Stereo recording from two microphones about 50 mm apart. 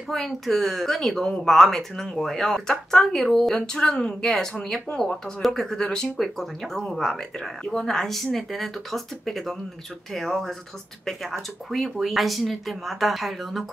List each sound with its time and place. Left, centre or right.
0.1 s speech: centre